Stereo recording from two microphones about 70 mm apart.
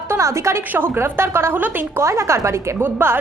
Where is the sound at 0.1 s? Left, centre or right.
Right.